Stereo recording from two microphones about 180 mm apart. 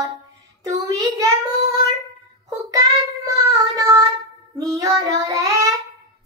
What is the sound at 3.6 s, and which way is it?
Child singing, 20° right (ahead or behind).